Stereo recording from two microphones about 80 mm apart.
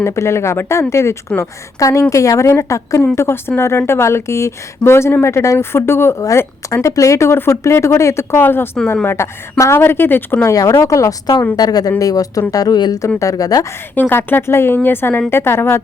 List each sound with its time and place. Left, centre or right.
0.0 s speech: left
10.4 s a woman's voice: left
13.1 s a woman's voice: left
13.9 s speech: left